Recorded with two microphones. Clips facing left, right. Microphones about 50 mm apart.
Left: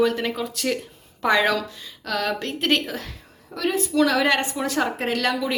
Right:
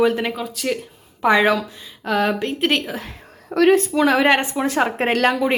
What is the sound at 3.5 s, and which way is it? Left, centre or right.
Speech, right.